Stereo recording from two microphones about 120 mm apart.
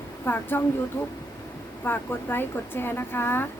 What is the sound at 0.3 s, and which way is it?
Speech, 15° left (ahead or behind).